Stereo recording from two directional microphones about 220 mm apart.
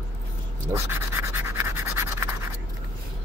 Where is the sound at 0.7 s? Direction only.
10° right (ahead or behind).